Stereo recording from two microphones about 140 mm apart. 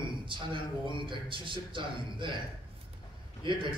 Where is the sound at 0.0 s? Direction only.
35° right (ahead or behind).